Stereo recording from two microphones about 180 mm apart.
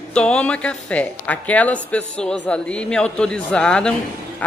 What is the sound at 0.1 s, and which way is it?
A man's voice, 5° left (ahead or behind).